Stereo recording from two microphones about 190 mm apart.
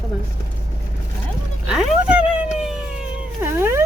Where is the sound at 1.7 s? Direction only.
5° right (ahead or behind).